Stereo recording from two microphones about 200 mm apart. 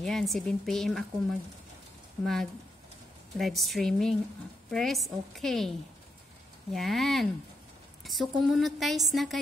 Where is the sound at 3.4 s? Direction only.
Centre (ahead or behind).